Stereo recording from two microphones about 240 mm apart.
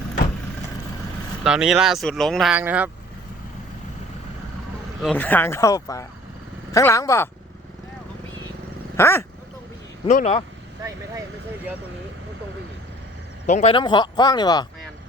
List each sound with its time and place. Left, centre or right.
1.5 s speech: centre
5.0 s speech: centre
9.0 s speech: centre
10.1 s speech: left
13.5 s speech: left